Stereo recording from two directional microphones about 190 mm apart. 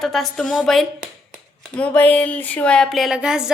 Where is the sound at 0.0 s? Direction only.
Centre (ahead or behind).